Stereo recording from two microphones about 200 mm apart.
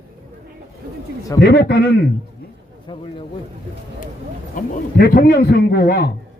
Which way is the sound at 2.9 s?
25° left (ahead or behind).